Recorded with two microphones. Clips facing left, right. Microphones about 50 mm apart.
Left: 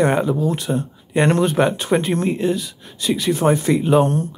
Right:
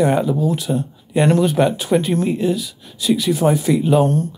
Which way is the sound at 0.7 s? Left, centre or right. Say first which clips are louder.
Right 1 dB; centre.